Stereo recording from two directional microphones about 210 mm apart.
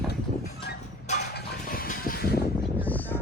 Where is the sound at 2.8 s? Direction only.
10° left (ahead or behind).